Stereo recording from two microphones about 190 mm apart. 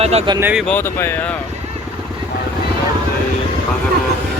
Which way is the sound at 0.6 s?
10° left (ahead or behind).